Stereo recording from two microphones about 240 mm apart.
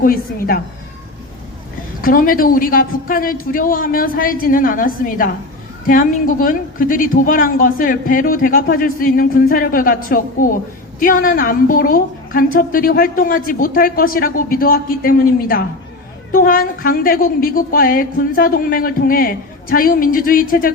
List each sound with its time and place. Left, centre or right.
0.0 s a woman's voice: left
2.0 s a woman's voice: left